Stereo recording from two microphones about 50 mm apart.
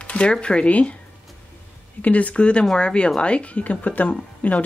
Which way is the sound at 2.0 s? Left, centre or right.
Left.